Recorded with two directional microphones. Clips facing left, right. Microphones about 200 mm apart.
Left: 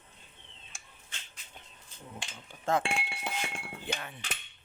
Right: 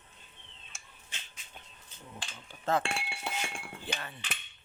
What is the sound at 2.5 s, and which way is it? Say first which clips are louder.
Speech: left 1 dB; 15° left (ahead or behind).